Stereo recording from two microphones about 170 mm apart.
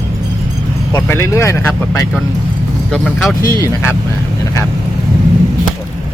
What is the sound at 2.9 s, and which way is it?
Speech, centre (ahead or behind).